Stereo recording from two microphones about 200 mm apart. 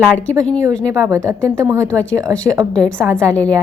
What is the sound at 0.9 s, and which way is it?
A woman's voice, 15° right (ahead or behind).